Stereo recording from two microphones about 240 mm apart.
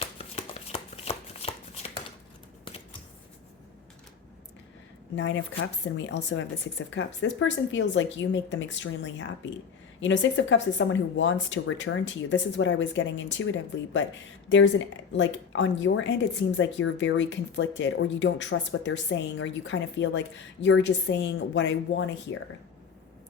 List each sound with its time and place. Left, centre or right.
0.0 s shuffling cards: left
5.1 s speech: left